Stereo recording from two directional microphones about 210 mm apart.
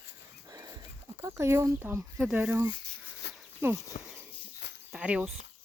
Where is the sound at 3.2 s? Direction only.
55° left (ahead or behind).